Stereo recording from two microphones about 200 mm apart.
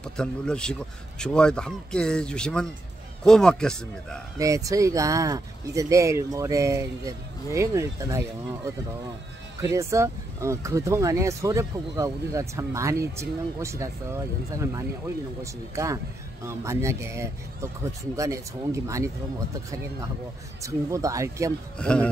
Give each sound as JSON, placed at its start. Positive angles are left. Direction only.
{"t": 0.0, "sound": "speech", "side_deg": 5}
{"t": 4.4, "sound": "speech", "side_deg": -15}
{"t": 20.6, "sound": "speech", "side_deg": -15}
{"t": 21.7, "sound": "speech", "side_deg": 5}